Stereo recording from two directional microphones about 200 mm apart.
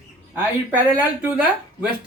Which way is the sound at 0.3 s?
10° right (ahead or behind).